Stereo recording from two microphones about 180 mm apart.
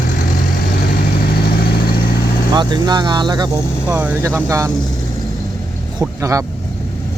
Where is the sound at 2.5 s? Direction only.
25° right (ahead or behind).